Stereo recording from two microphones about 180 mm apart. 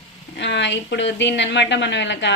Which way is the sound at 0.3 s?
80° left.